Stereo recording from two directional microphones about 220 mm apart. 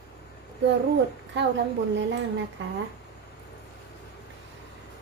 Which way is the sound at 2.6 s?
55° right (ahead or behind).